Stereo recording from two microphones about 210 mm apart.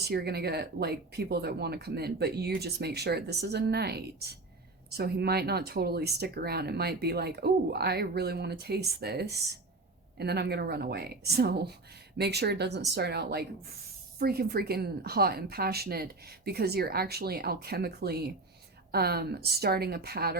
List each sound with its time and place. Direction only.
0.0 s speech: 50° right (ahead or behind)